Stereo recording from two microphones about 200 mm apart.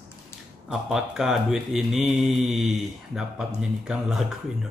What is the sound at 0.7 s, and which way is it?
Speech, 5° right (ahead or behind).